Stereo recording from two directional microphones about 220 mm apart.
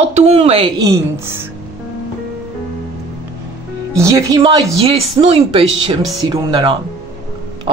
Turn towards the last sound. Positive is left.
turn(degrees=-20)  # may be behind; listen again after turning